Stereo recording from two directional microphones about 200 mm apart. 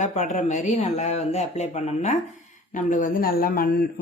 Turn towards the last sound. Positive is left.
turn(degrees=45)  # may be behind; listen again after turning